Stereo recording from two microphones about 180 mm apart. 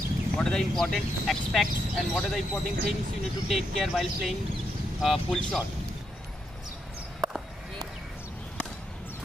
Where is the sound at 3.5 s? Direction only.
Centre (ahead or behind).